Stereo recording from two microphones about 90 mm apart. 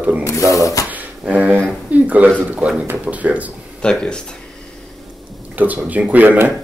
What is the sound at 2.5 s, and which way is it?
Speech, 10° right (ahead or behind).